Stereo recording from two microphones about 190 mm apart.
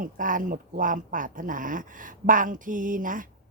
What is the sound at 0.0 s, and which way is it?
A woman's voice, 45° right (ahead or behind).